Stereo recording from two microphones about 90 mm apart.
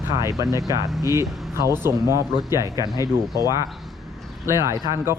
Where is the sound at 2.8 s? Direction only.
45° left (ahead or behind).